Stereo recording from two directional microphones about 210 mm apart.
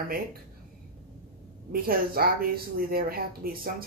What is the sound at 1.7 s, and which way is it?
A woman's voice, 45° right (ahead or behind).